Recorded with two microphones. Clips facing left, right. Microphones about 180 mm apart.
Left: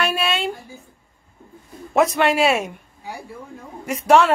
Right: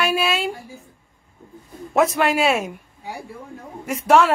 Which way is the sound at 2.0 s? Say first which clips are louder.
Left 1 dB; centre (ahead or behind).